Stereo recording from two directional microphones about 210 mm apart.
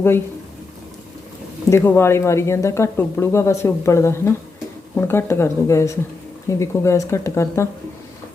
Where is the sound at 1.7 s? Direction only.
10° left (ahead or behind).